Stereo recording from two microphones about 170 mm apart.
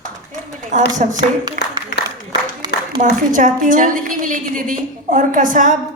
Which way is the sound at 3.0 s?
50° right (ahead or behind).